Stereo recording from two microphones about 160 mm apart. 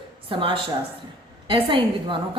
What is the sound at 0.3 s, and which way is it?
A woman's voice, 35° right (ahead or behind).